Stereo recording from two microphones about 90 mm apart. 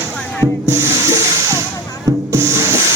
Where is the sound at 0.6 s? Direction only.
35° right (ahead or behind).